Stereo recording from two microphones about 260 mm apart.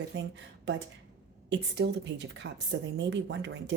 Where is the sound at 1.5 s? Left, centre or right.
Right.